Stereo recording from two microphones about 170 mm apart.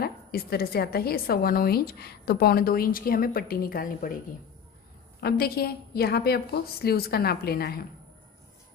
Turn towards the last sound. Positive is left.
turn(degrees=65)  # may be behind; listen again after turning